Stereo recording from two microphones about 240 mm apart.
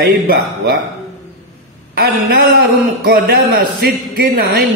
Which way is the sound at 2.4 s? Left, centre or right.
Right.